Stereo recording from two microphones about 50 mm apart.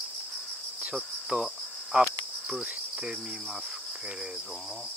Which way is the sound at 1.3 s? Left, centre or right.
Centre.